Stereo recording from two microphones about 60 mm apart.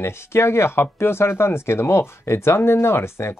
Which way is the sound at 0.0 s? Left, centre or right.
Left.